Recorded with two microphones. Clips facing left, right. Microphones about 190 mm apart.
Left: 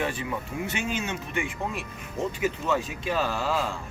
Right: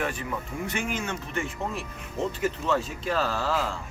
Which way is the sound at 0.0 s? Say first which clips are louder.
Left 1 dB; 20° left (ahead or behind).